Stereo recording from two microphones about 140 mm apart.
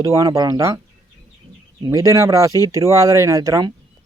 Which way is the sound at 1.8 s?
25° right (ahead or behind).